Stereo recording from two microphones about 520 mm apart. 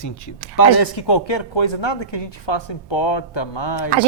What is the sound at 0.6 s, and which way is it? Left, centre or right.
Speech, left.